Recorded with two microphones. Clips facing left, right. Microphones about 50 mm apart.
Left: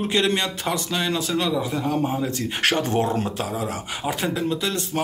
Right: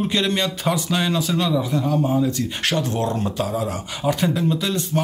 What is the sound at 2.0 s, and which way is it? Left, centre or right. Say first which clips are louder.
Speech: right 4 dB; left.